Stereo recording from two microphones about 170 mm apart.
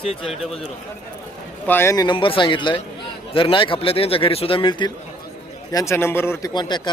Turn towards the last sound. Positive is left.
turn(degrees=25)  # may be behind; listen again after turning